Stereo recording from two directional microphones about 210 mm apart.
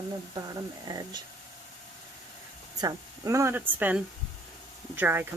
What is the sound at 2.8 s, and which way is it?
Speech, 15° right (ahead or behind).